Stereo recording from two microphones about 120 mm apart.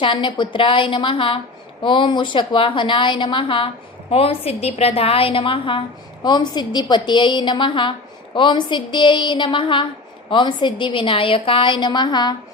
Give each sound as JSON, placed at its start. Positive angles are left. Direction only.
{"t": 0.0, "sound": "a woman's voice", "side_deg": 45}